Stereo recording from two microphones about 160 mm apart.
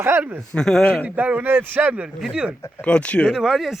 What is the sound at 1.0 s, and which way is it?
A man's voice, 10° right (ahead or behind).